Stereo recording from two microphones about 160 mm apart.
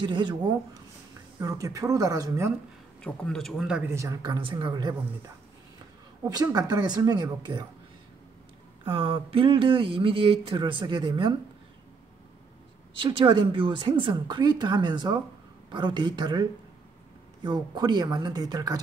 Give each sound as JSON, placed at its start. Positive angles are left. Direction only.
{"t": 0.0, "sound": "speech", "side_deg": -30}
{"t": 3.0, "sound": "a man's voice", "side_deg": 5}
{"t": 3.9, "sound": "speech", "side_deg": -20}
{"t": 6.2, "sound": "speech", "side_deg": -20}
{"t": 8.8, "sound": "speech", "side_deg": -35}
{"t": 13.0, "sound": "speech", "side_deg": -30}